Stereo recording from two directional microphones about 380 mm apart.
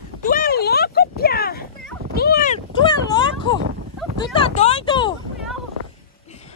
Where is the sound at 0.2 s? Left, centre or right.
Left.